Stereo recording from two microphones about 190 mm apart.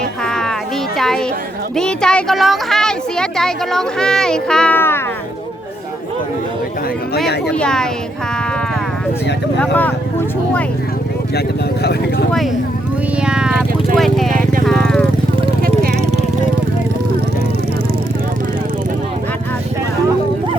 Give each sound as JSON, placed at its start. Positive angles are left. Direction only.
{"t": 0.3, "sound": "a sound", "side_deg": 5}
{"t": 0.9, "sound": "children playing", "side_deg": 0}
{"t": 1.7, "sound": "speech", "side_deg": 5}
{"t": 7.5, "sound": "speech", "side_deg": 5}
{"t": 9.6, "sound": "speech", "side_deg": 10}
{"t": 11.3, "sound": "speech", "side_deg": 60}
{"t": 13.2, "sound": "speech", "side_deg": -5}
{"t": 14.3, "sound": "vehicle", "side_deg": -45}
{"t": 14.7, "sound": "vehicle", "side_deg": 5}
{"t": 15.6, "sound": "vehicle", "side_deg": -50}